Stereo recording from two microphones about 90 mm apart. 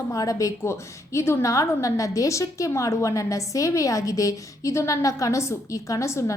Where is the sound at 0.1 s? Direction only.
40° left (ahead or behind).